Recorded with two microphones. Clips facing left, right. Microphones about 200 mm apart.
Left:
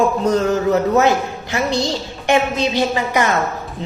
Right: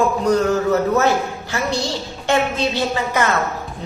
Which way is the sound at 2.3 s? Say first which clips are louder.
Left 2 dB; 15° left (ahead or behind).